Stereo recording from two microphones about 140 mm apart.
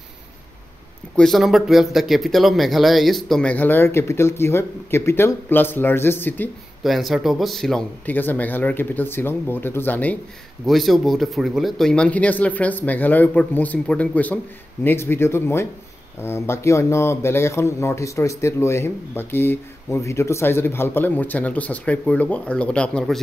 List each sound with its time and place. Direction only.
1.1 s speech: centre (ahead or behind)
6.8 s speech: centre (ahead or behind)
8.0 s speech: 15° left (ahead or behind)
10.7 s speech: centre (ahead or behind)